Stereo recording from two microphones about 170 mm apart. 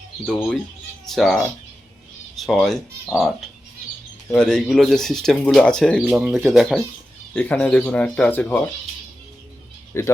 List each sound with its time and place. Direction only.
0.3 s speech: 5° left (ahead or behind)
9.9 s speech: 15° left (ahead or behind)